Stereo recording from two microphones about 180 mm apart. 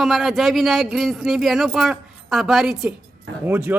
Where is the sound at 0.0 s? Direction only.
Centre (ahead or behind).